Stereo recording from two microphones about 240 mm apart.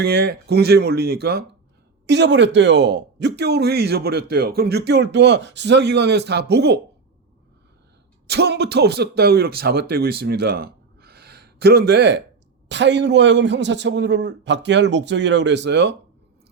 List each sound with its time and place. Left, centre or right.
0.0 s speech: right
8.3 s speech: right